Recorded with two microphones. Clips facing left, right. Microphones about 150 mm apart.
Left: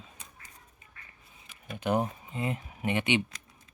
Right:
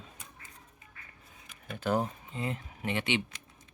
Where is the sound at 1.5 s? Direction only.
10° left (ahead or behind).